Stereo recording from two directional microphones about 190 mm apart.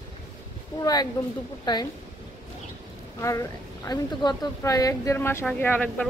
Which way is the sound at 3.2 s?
15° left (ahead or behind).